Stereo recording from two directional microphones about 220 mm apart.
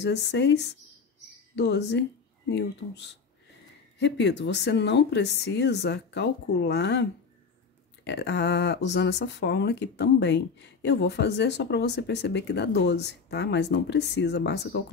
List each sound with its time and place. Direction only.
0.0 s speech: 50° left (ahead or behind)